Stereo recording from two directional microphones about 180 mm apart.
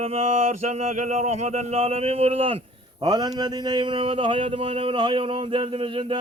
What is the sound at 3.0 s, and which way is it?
Speech, 20° right (ahead or behind).